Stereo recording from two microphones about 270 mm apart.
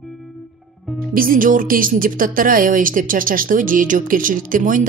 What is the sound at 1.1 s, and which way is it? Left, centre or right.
A woman's voice, right.